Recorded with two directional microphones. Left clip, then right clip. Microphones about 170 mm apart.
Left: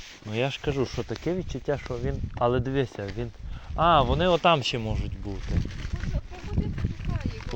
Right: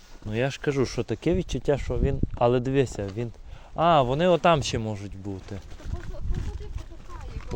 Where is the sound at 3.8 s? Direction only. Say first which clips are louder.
Right 1 dB; 45° right (ahead or behind).